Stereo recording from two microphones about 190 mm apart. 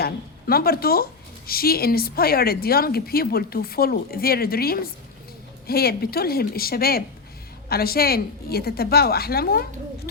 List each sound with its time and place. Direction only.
0.0 s a woman's voice: 50° left (ahead or behind)